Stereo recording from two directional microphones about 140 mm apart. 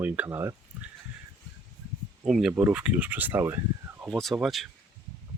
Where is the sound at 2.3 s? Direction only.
Centre (ahead or behind); by 4.0 s 20° right (ahead or behind).